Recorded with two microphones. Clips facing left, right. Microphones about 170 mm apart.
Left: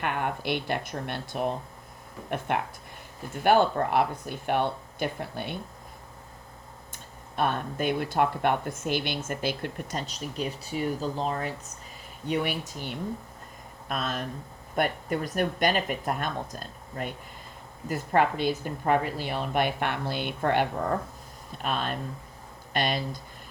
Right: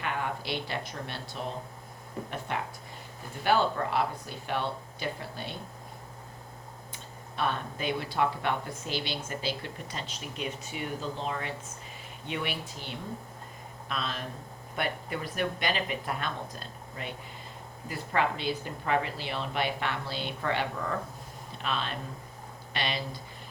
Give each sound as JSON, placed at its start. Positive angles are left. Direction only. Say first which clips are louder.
{"t": 0.0, "sound": "speech", "louder": "left 4 dB", "side_deg": 60}
{"t": 6.9, "sound": "speech", "louder": "left 5 dB", "side_deg": 50}
{"t": 10.1, "sound": "speech", "louder": "left 4 dB", "side_deg": 40}